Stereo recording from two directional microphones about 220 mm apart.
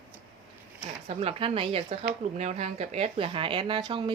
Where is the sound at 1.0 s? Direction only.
25° right (ahead or behind).